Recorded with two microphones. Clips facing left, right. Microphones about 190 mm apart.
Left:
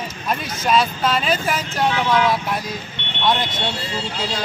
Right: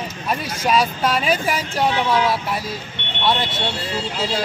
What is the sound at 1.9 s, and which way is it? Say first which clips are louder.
Speech: left 2 dB; 30° right (ahead or behind).